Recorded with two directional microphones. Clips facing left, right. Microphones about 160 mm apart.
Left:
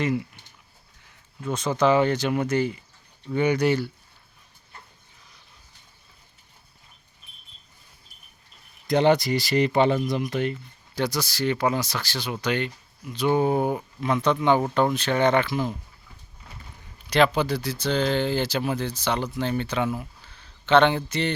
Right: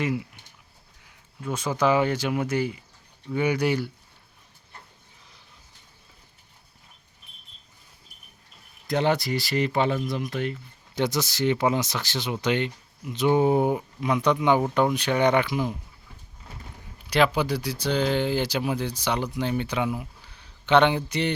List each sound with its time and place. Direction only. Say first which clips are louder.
0.0 s speech: left 2 dB; 5° right (ahead or behind)
1.5 s speech: left 2 dB; 10° right (ahead or behind)
8.9 s speech: left 4 dB; centre (ahead or behind)
10.9 s speech: right 1 dB; 20° right (ahead or behind)
17.1 s speech: left 1 dB; 10° right (ahead or behind)